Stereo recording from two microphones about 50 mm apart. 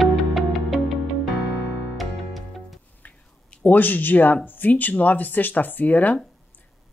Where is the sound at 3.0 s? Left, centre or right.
Left.